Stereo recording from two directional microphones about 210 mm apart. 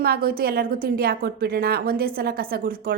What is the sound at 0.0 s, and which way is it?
A woman's voice, 45° right (ahead or behind).